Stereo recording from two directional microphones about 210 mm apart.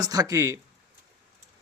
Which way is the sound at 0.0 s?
15° right (ahead or behind).